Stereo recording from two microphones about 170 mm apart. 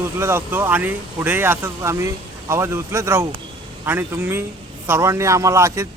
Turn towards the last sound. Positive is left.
turn(degrees=-15)  # may be behind; listen again after turning